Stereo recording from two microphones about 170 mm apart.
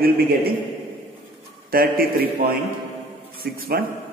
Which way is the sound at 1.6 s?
60° right (ahead or behind).